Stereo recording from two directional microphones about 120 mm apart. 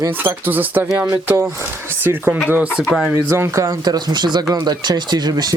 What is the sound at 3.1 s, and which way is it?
Speech, 20° right (ahead or behind).